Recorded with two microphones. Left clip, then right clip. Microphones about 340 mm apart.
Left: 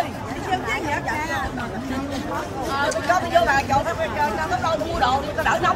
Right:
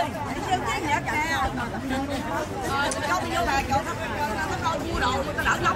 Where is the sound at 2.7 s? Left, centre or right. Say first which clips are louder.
Left 5 dB; centre.